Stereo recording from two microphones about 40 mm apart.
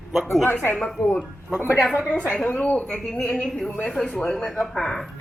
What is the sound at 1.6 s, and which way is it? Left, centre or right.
Speech, left.